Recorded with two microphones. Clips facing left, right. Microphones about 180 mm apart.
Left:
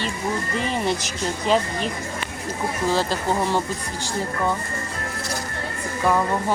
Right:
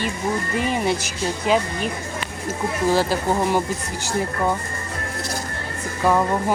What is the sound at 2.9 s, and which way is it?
Speech, 10° right (ahead or behind).